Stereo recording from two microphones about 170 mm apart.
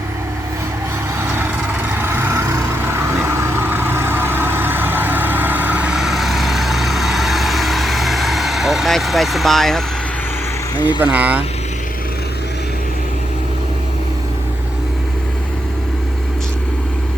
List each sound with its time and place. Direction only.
2.0 s vehicle: 15° right (ahead or behind); by 9.8 s centre (ahead or behind)
10.8 s speech: 25° left (ahead or behind)
11.0 s speech: 10° right (ahead or behind)